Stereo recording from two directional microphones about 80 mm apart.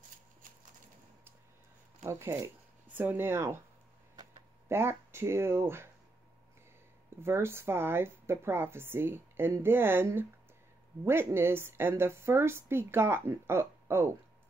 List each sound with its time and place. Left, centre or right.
2.0 s speech: right
3.0 s speech: right
4.6 s speech: right
7.2 s speech: right